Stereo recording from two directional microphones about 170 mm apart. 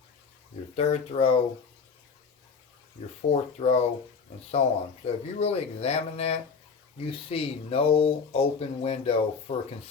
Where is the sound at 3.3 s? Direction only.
40° left (ahead or behind).